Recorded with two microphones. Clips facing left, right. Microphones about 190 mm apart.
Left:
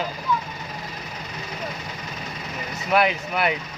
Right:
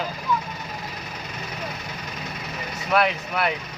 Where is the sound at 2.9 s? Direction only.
5° left (ahead or behind).